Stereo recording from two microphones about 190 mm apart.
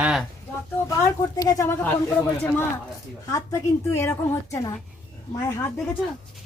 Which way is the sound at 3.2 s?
15° left (ahead or behind).